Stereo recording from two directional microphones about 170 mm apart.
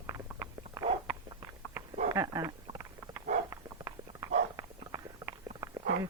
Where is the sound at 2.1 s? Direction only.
20° right (ahead or behind).